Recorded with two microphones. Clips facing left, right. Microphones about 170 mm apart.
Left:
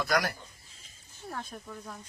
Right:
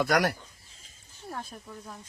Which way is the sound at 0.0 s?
70° right (ahead or behind).